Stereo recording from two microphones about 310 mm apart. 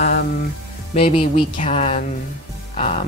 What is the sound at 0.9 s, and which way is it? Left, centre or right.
Speech, centre.